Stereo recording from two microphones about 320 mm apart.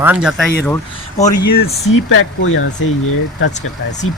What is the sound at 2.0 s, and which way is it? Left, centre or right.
Speech, left.